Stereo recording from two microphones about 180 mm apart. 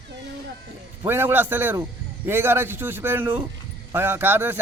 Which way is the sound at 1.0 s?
10° right (ahead or behind).